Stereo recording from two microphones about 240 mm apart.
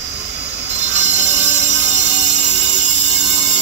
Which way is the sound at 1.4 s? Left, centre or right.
Right.